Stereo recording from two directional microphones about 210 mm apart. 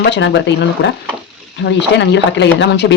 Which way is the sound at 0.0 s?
60° left (ahead or behind).